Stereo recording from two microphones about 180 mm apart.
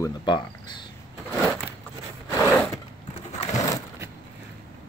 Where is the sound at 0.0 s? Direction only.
25° left (ahead or behind).